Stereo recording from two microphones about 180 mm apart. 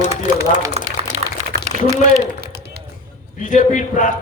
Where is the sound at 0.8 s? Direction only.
35° right (ahead or behind).